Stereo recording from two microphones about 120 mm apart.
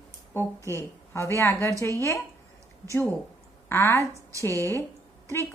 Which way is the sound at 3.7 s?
20° left (ahead or behind).